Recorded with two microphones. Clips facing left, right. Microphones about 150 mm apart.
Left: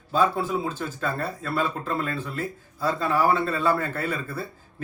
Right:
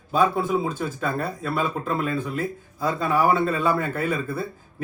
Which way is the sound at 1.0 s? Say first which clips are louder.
Even; 5° right (ahead or behind).